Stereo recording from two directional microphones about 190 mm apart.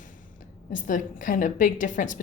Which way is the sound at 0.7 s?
45° left (ahead or behind).